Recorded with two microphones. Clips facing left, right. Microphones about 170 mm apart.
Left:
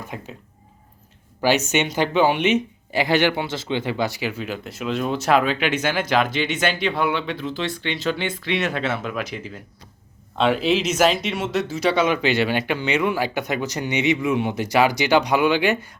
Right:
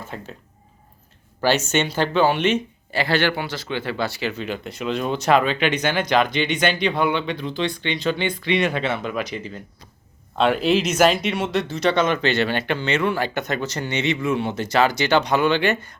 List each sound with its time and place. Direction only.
0.0 s speech: 15° left (ahead or behind)
1.4 s speech: 10° left (ahead or behind)